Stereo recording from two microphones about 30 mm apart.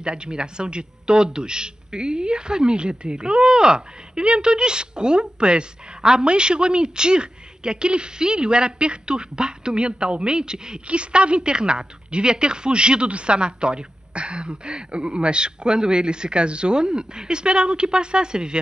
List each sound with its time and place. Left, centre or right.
0.0 s a man's voice: right